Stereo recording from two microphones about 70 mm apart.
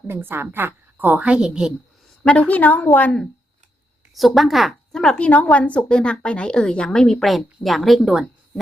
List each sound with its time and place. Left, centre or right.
0.1 s a woman's voice: right
1.3 s a woman's voice: centre
2.2 s a woman's voice: centre
4.4 s speech: centre
4.9 s speech: centre